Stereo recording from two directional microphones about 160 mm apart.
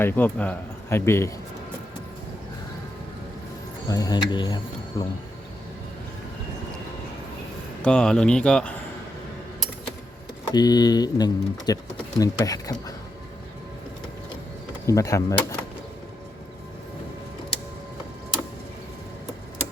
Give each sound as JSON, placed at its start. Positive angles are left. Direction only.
{"t": 0.0, "sound": "speech", "side_deg": 10}
{"t": 3.8, "sound": "speech", "side_deg": 20}
{"t": 7.8, "sound": "speech", "side_deg": 5}
{"t": 10.5, "sound": "speech", "side_deg": 25}
{"t": 14.8, "sound": "speech", "side_deg": 20}